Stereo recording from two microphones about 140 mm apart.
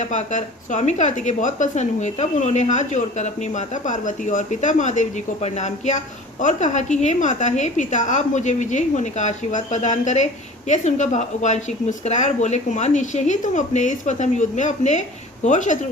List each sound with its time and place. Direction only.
0.0 s a woman's voice: 60° left (ahead or behind)